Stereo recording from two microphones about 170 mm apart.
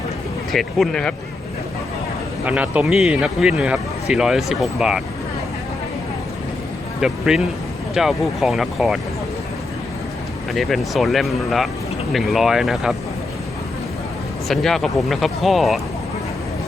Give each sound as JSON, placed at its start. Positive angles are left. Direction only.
{"t": 0.5, "sound": "a man's voice", "side_deg": 0}
{"t": 2.4, "sound": "a man's voice", "side_deg": -10}
{"t": 7.0, "sound": "a man's voice", "side_deg": -5}
{"t": 10.5, "sound": "a man's voice", "side_deg": 0}
{"t": 14.4, "sound": "a man's voice", "side_deg": 0}